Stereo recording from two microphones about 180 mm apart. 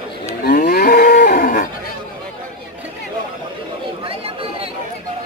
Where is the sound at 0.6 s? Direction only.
55° left (ahead or behind).